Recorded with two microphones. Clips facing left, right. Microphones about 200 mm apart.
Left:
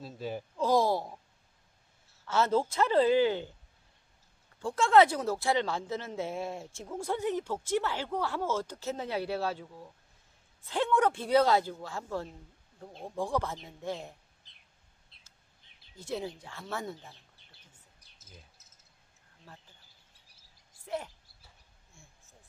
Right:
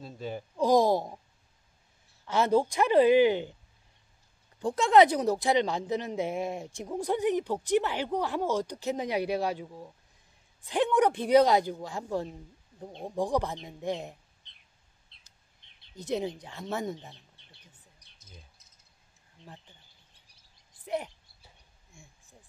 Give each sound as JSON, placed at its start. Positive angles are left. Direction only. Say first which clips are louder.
{"t": 0.0, "sound": "speech", "louder": "even", "side_deg": 5}
{"t": 0.6, "sound": "a sound", "louder": "right 4 dB", "side_deg": -15}
{"t": 2.2, "sound": "speech", "louder": "right 3 dB", "side_deg": -15}
{"t": 4.6, "sound": "speech", "louder": "right 2 dB", "side_deg": -15}
{"t": 14.4, "sound": "bird", "louder": "right 1 dB", "side_deg": 5}
{"t": 15.6, "sound": "a sound", "louder": "even", "side_deg": 5}
{"t": 16.0, "sound": "speech", "louder": "right 5 dB", "side_deg": -20}
{"t": 17.1, "sound": "bird", "louder": "right 3 dB", "side_deg": 0}
{"t": 20.8, "sound": "a sound", "louder": "right 4 dB", "side_deg": -20}